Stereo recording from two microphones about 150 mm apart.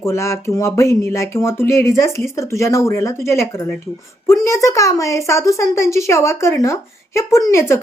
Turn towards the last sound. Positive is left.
turn(degrees=20)  # may be behind; listen again after turning